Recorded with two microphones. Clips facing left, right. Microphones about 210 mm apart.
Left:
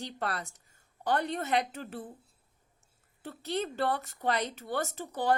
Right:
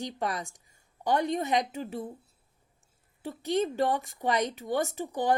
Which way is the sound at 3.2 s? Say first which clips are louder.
Right 6 dB; 15° right (ahead or behind).